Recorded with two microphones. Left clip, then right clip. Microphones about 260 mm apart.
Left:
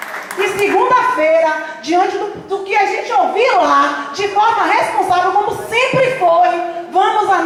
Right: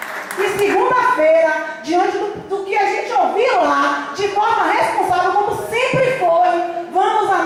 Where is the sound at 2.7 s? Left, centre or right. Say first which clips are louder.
Left 3 dB; centre.